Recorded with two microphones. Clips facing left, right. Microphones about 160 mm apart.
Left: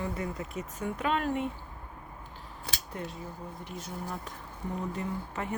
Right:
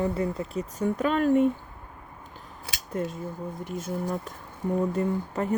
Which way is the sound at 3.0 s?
45° right (ahead or behind).